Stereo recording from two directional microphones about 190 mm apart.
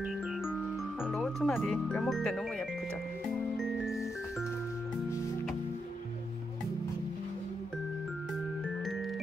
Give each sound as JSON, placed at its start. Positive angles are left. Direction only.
{"t": 1.0, "sound": "speech", "side_deg": 0}
{"t": 3.8, "sound": "music", "side_deg": 0}